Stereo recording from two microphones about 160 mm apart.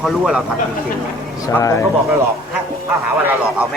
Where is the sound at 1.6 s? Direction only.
20° left (ahead or behind).